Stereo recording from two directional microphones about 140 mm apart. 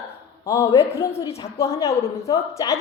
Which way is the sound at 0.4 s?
20° left (ahead or behind).